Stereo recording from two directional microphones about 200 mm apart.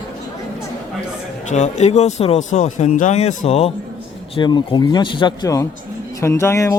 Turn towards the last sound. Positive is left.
turn(degrees=15)  # may be behind; listen again after turning